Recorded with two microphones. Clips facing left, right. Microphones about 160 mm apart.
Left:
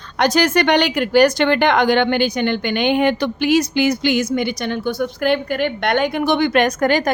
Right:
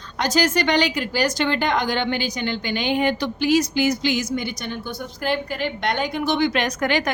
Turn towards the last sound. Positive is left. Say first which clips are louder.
# left 6 dB
turn(degrees=45)  # may be behind; listen again after turning